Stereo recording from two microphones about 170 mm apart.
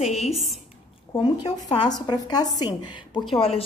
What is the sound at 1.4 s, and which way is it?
A woman's voice, 25° left (ahead or behind).